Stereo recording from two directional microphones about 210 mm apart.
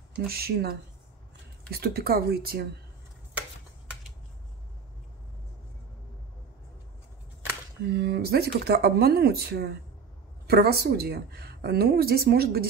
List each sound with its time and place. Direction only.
0.3 s a woman's voice: 50° right (ahead or behind)
1.7 s a woman's voice: 45° right (ahead or behind)
7.8 s a woman's voice: 50° right (ahead or behind)